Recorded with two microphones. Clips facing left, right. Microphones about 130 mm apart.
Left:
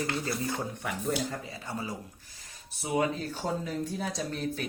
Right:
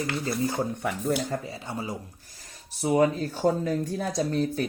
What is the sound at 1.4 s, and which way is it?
Speech, 30° right (ahead or behind).